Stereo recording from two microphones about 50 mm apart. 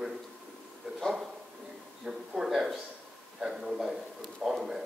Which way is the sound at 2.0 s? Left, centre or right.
Centre.